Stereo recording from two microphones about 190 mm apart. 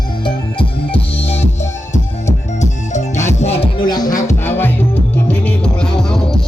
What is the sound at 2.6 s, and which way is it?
Music, 40° left (ahead or behind).